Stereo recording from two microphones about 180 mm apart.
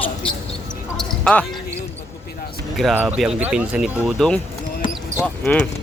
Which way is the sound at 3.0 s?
5° right (ahead or behind).